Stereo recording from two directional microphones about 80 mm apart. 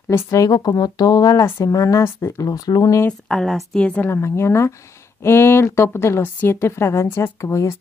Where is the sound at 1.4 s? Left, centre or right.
Left.